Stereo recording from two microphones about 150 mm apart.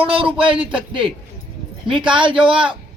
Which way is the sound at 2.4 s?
35° right (ahead or behind).